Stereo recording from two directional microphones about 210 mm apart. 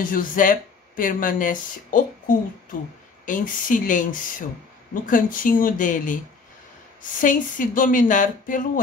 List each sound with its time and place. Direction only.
0.0 s speech: 40° left (ahead or behind)